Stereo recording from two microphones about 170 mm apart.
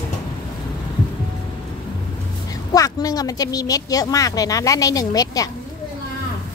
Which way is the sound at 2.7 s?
20° left (ahead or behind).